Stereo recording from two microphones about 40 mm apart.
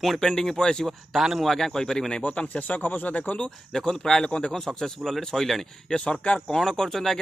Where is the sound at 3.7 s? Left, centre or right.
Centre.